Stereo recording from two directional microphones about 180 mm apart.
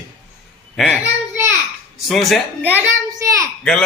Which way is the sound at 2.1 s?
Centre (ahead or behind).